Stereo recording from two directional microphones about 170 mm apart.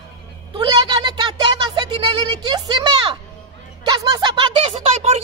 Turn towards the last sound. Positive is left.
turn(degrees=-40)  # may be behind; listen again after turning